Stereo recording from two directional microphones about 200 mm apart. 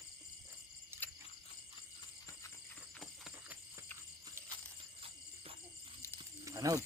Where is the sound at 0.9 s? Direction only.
10° right (ahead or behind).